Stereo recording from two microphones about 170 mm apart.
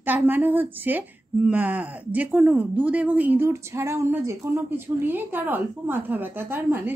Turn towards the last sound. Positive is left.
turn(degrees=-10)  # may be behind; listen again after turning